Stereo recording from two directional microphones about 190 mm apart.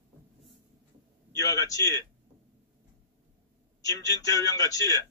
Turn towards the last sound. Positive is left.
turn(degrees=20)  # may be behind; listen again after turning